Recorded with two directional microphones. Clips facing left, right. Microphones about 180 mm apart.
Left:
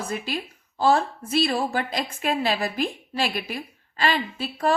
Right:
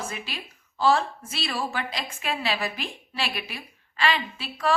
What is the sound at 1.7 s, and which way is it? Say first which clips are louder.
A woman's voice: left 5 dB; 40° left (ahead or behind).